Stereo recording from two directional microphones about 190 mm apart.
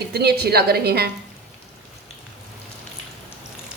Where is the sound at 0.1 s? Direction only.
55° right (ahead or behind).